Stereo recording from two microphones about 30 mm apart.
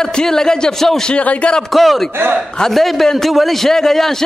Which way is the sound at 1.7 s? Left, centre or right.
Centre.